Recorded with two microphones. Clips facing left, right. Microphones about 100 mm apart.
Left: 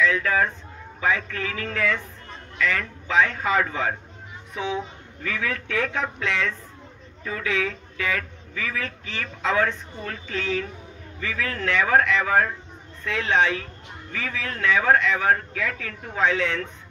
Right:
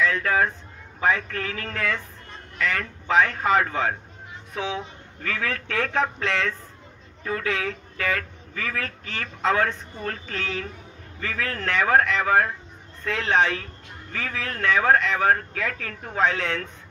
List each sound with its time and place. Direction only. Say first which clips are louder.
0.0 s a man's voice: even; 45° right (ahead or behind)
5.2 s a man's voice: even; 50° right (ahead or behind)
5.8 s a man's voice: right 3 dB; 40° right (ahead or behind)